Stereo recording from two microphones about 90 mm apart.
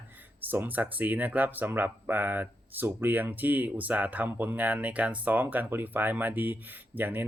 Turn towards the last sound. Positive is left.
turn(degrees=-20)  # may be behind; listen again after turning